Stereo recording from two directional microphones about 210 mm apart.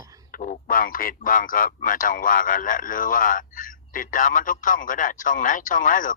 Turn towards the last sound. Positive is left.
turn(degrees=40)  # may be behind; listen again after turning